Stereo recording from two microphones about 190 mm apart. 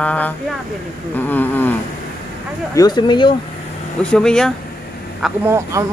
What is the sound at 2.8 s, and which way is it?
Speech, 20° left (ahead or behind).